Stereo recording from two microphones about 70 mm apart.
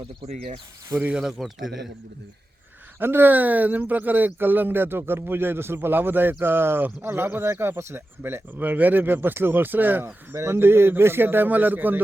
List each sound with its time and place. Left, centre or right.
1.1 s speech: centre
3.0 s speech: right
10.3 s speech: right